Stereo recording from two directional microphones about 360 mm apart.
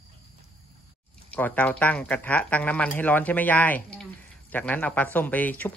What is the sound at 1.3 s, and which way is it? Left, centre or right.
Speech, centre.